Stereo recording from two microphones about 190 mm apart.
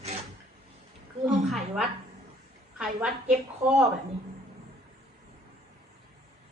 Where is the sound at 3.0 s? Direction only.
5° right (ahead or behind).